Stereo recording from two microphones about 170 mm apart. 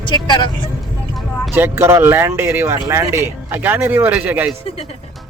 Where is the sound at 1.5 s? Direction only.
15° right (ahead or behind).